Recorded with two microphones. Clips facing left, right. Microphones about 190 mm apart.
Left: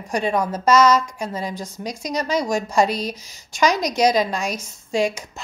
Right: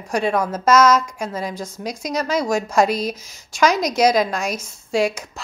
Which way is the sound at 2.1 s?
Centre (ahead or behind).